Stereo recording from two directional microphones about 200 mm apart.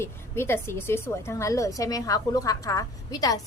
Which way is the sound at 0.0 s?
10° left (ahead or behind).